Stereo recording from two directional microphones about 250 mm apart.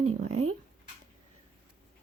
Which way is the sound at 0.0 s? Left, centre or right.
Right.